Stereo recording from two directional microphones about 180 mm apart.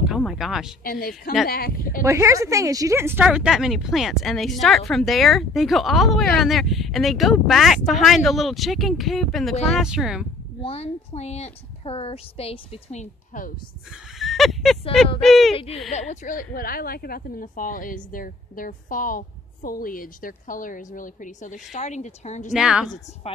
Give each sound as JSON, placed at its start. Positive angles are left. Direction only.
{"t": 0.0, "sound": "speech", "side_deg": 0}
{"t": 0.8, "sound": "speech", "side_deg": 55}
{"t": 2.0, "sound": "speech", "side_deg": -15}
{"t": 10.6, "sound": "a woman's voice", "side_deg": 35}
{"t": 14.1, "sound": "a sound", "side_deg": 0}
{"t": 15.2, "sound": "speech", "side_deg": 0}
{"t": 15.5, "sound": "a woman's voice", "side_deg": 35}
{"t": 16.5, "sound": "a woman's voice", "side_deg": 55}
{"t": 22.5, "sound": "speech", "side_deg": -5}